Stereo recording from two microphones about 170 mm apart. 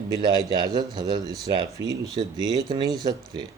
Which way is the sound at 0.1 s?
25° right (ahead or behind).